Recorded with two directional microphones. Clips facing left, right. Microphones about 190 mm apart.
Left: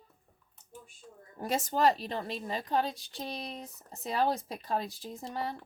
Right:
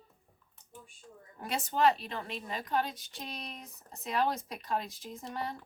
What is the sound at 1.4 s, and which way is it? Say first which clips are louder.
A woman's voice: left 1 dB; 40° left (ahead or behind).